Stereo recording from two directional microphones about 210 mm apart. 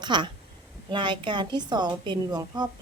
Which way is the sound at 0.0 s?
20° right (ahead or behind).